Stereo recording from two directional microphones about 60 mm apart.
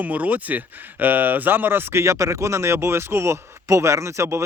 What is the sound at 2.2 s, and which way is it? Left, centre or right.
Speech, right.